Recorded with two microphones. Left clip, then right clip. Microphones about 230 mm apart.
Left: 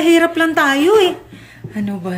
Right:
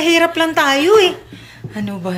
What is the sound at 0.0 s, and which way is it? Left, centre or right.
Speech, centre.